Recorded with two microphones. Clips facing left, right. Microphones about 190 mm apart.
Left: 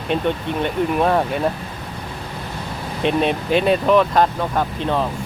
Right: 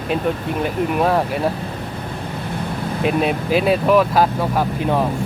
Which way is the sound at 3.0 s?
5° right (ahead or behind).